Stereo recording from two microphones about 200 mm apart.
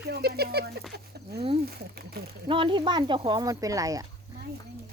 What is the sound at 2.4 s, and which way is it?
Speech, 25° right (ahead or behind).